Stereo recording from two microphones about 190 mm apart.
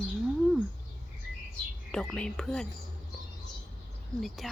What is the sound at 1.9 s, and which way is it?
Speech, 5° left (ahead or behind).